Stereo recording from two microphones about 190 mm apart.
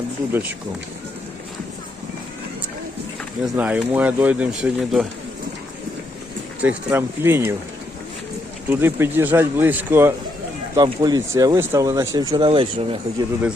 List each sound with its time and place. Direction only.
3.4 s speech: 5° right (ahead or behind)
6.6 s speech: 10° right (ahead or behind)
8.7 s speech: 10° right (ahead or behind); by 13.2 s 30° right (ahead or behind)